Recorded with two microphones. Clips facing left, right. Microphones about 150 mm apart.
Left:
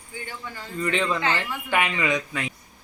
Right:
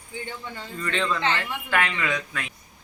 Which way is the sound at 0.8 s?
15° left (ahead or behind).